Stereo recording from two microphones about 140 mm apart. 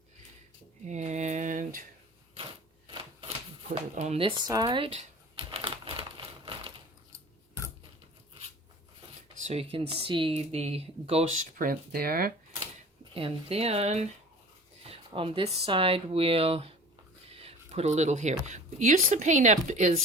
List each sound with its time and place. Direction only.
0.9 s a sound: 55° right (ahead or behind)
2.3 s a sound: 45° right (ahead or behind)
3.8 s speech: 50° right (ahead or behind); by 4.9 s 35° right (ahead or behind)
4.9 s crumpling: 45° right (ahead or behind)
9.4 s speech: 45° right (ahead or behind)
11.5 s speech: 80° right
13.1 s speech: 45° right (ahead or behind)